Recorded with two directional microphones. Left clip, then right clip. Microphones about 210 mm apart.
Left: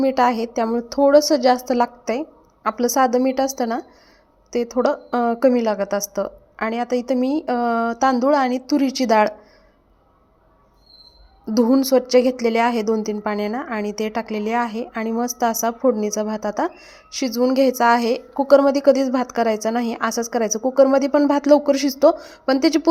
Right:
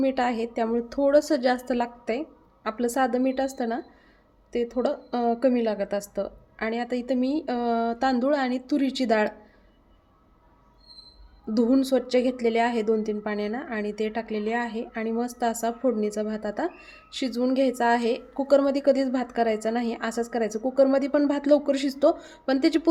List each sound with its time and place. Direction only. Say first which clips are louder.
0.0 s a woman's voice: left 7 dB; 15° left (ahead or behind)
11.5 s a woman's voice: left 6 dB; 15° left (ahead or behind)